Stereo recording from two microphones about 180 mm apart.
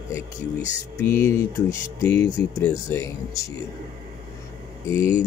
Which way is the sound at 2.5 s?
15° left (ahead or behind).